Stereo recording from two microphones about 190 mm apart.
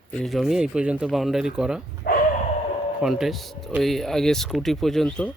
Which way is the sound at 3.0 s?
5° right (ahead or behind).